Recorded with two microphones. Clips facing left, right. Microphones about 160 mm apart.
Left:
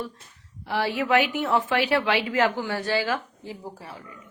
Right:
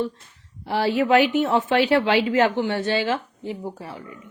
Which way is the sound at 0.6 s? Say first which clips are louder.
Right 5 dB; 30° right (ahead or behind).